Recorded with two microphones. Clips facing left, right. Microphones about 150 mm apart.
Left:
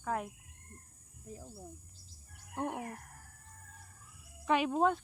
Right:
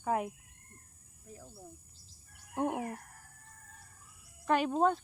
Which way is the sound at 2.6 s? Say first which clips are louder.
Right 4 dB; 15° right (ahead or behind).